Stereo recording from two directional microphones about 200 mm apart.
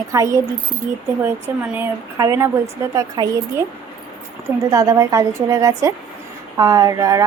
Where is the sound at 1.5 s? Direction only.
10° right (ahead or behind).